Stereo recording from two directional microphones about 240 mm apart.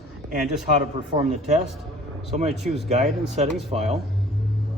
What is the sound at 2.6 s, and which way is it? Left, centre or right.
Speech, centre.